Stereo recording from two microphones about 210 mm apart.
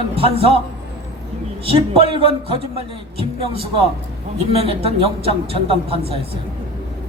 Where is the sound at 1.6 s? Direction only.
25° right (ahead or behind).